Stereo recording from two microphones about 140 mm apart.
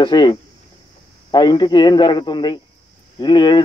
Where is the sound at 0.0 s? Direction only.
30° left (ahead or behind).